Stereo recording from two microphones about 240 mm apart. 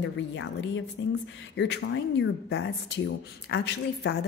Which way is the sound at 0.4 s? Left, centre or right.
Left.